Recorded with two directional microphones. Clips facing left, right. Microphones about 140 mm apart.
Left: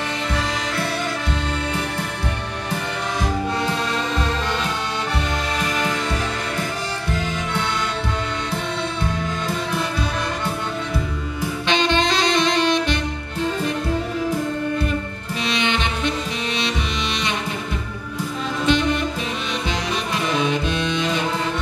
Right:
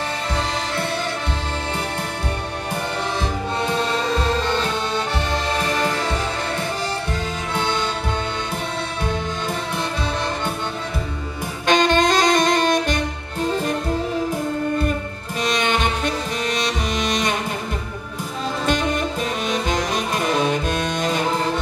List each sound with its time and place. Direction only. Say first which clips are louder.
0.3 s music: right 1 dB; 30° right (ahead or behind)
4.2 s music: right 3 dB; 35° right (ahead or behind)
11.6 s saxophone: right 4 dB; 45° right (ahead or behind)
15.4 s saxophone: right 2 dB; 45° right (ahead or behind)
18.7 s saxophone: left 2 dB; 45° right (ahead or behind)